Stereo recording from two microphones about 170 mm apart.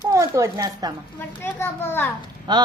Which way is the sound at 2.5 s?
25° right (ahead or behind).